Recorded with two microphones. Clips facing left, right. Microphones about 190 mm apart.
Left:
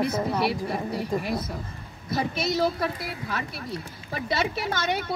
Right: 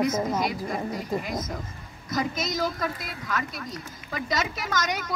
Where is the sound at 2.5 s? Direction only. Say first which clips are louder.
Left 5 dB; 30° left (ahead or behind).